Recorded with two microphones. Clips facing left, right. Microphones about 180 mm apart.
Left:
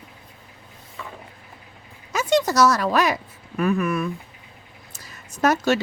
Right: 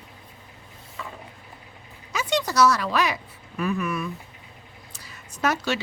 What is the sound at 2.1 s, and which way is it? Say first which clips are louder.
Speech: left 6 dB; 45° left (ahead or behind).